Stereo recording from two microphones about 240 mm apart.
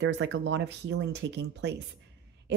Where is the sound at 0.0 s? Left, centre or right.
Right.